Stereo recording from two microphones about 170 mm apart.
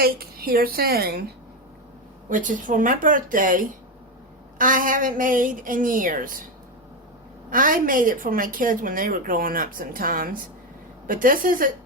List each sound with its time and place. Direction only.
0.0 s a woman's voice: 60° right (ahead or behind)
2.3 s a woman's voice: 50° right (ahead or behind)
7.5 s a woman's voice: 55° right (ahead or behind)